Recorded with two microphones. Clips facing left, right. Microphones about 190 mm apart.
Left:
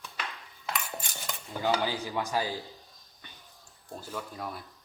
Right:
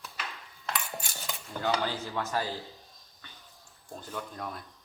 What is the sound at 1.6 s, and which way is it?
Speech, 10° left (ahead or behind).